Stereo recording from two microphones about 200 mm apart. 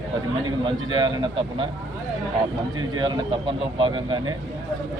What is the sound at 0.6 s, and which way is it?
Speech, 20° right (ahead or behind).